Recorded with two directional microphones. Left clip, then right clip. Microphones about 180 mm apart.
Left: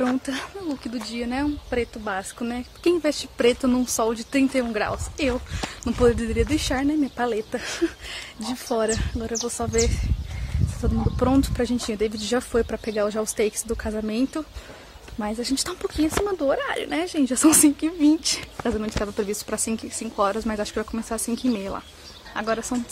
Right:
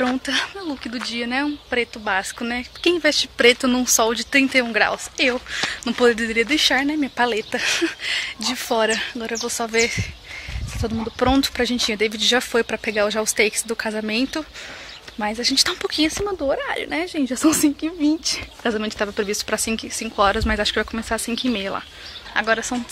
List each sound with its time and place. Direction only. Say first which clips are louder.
0.9 s speech: right 7 dB; 5° right (ahead or behind)
10.8 s speech: right 3 dB; centre (ahead or behind)